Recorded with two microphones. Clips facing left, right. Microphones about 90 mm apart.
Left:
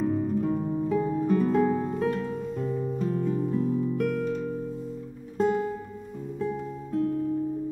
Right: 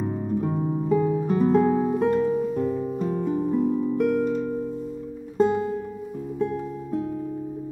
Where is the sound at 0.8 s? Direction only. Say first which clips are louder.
Right 4 dB; 5° right (ahead or behind).